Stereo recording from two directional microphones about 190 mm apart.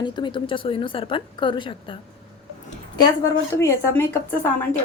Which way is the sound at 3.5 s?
10° left (ahead or behind).